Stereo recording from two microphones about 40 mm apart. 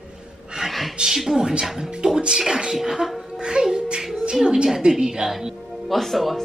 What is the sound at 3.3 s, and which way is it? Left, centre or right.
A child's voice, centre.